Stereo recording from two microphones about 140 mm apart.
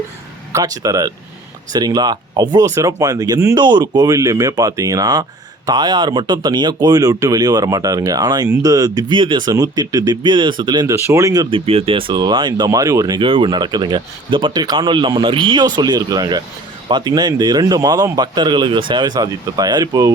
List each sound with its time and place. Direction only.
0.5 s speech: 25° right (ahead or behind)
10.9 s speech: 20° right (ahead or behind)
11.5 s speech: 45° right (ahead or behind); by 20.1 s 25° right (ahead or behind)